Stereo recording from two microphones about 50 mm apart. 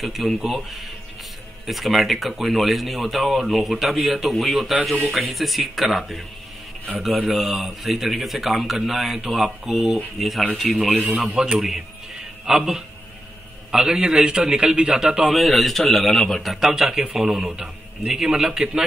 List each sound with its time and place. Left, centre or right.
0.0 s a man's voice: centre
7.2 s a man's voice: centre
11.1 s a man's voice: centre
15.3 s a man's voice: centre
16.5 s a man's voice: centre